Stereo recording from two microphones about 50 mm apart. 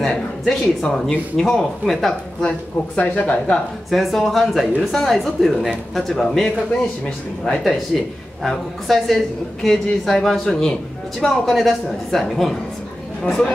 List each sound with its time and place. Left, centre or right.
0.0 s speech: centre
1.9 s a woman's voice: centre
3.0 s speech: left
3.9 s a woman's voice: centre
10.4 s speech: centre
11.1 s a woman's voice: centre